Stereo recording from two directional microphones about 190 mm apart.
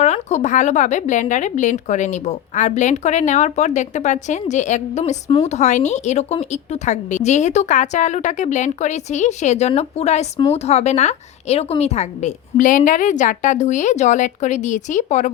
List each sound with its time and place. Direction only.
0.0 s a woman's voice: 35° left (ahead or behind)